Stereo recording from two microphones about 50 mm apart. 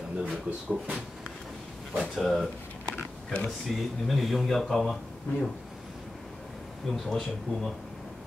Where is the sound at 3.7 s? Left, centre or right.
Centre.